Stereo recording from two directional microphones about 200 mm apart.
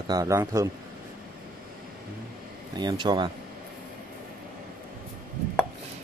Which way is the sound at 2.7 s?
20° right (ahead or behind).